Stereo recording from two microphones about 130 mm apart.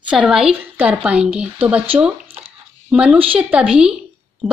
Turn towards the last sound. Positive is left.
turn(degrees=-5)  # may be behind; listen again after turning